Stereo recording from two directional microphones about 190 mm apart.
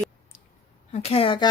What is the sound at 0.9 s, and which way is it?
Speech, 30° left (ahead or behind).